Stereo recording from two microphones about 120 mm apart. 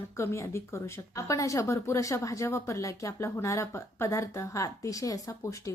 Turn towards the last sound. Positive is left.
turn(degrees=25)  # may be behind; listen again after turning